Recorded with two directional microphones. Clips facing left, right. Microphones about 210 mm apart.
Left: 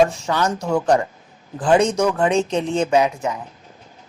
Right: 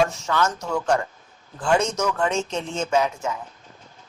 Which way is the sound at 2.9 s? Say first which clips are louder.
Left 1 dB; 15° left (ahead or behind).